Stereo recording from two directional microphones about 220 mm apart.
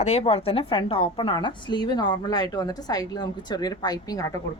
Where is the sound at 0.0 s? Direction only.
30° left (ahead or behind).